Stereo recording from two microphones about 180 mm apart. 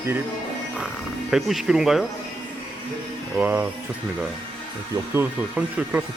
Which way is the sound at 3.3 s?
10° right (ahead or behind).